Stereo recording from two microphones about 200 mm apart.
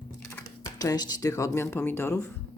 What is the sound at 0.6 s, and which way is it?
Speech, 20° left (ahead or behind).